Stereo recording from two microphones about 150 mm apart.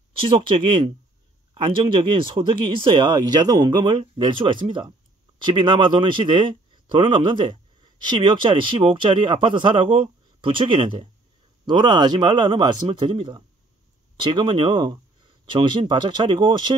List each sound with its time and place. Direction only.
0.2 s speech: 35° right (ahead or behind)